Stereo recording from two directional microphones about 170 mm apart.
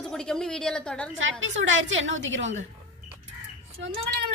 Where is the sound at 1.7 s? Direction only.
90° right.